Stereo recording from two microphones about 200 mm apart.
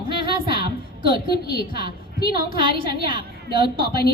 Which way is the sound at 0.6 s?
25° right (ahead or behind).